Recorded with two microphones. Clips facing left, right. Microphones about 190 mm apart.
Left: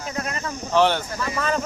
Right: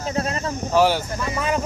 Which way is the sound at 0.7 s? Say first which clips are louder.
Right 1 dB; 10° right (ahead or behind).